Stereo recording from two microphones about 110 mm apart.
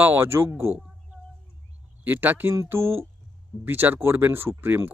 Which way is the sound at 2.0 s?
15° right (ahead or behind).